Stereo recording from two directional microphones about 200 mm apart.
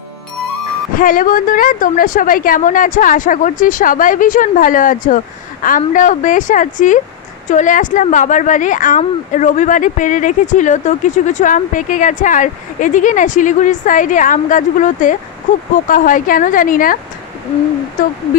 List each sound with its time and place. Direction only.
0.9 s a woman's voice: 45° left (ahead or behind)